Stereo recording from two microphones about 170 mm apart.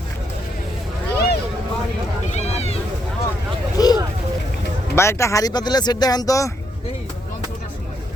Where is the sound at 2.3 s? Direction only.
40° left (ahead or behind).